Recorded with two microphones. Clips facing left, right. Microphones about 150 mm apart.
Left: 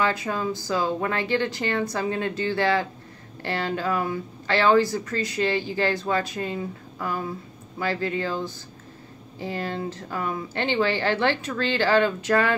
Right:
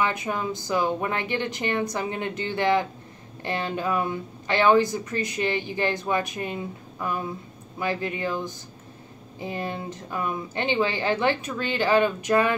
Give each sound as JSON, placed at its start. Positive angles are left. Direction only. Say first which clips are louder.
{"t": 0.0, "sound": "a woman's voice", "louder": "left 1 dB", "side_deg": -20}